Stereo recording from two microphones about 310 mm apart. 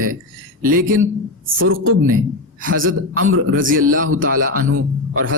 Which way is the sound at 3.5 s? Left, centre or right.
Right.